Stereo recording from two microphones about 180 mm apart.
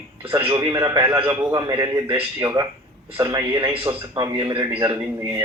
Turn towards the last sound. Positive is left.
turn(degrees=-20)  # may be behind; listen again after turning